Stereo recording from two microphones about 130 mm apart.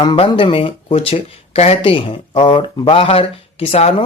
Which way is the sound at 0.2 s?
40° left (ahead or behind).